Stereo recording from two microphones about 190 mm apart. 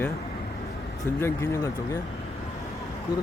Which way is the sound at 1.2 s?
15° left (ahead or behind).